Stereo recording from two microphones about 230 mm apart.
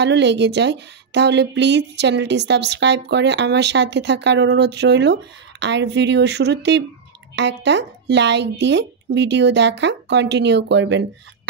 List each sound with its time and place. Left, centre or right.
0.0 s a woman's voice: right